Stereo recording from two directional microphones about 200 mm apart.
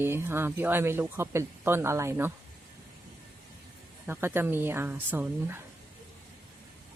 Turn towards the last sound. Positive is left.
turn(degrees=-10)  # may be behind; listen again after turning